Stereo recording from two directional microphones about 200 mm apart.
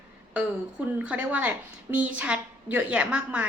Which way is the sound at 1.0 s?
5° right (ahead or behind).